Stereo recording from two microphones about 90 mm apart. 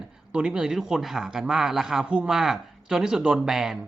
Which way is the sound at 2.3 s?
5° right (ahead or behind).